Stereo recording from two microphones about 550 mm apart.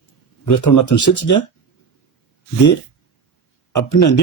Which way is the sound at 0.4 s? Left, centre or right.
Left.